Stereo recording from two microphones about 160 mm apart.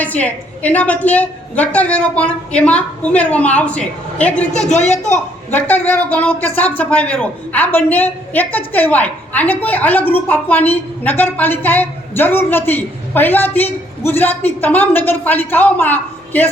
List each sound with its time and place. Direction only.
0.0 s speech: 10° left (ahead or behind)
4.7 s speech: 45° left (ahead or behind)
5.5 s speech: 10° left (ahead or behind)